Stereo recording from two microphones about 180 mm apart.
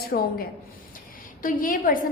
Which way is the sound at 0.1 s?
55° left (ahead or behind).